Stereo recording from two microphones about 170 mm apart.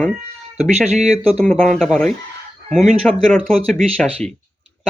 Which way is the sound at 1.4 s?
5° left (ahead or behind).